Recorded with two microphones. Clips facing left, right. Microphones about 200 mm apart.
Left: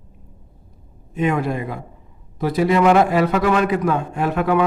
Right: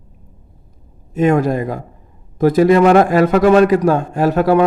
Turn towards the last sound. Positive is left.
turn(degrees=-40)  # may be behind; listen again after turning